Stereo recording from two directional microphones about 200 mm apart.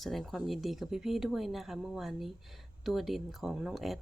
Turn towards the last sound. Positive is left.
turn(degrees=0)  # may be behind; listen again after turning